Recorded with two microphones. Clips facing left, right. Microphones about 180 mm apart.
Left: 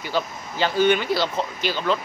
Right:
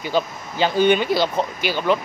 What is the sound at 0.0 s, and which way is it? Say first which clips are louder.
Speech: right 4 dB; 15° right (ahead or behind).